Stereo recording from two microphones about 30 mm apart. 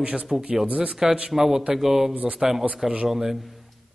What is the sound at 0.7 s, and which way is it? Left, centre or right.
Speech, right.